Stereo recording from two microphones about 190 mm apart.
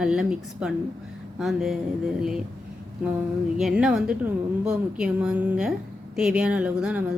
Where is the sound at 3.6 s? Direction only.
Centre (ahead or behind).